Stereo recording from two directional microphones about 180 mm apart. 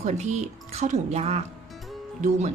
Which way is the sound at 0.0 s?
40° right (ahead or behind).